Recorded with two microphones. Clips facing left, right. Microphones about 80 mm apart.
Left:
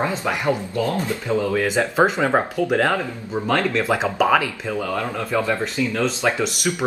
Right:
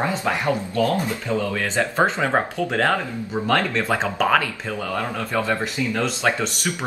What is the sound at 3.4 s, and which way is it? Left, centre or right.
Speech, centre.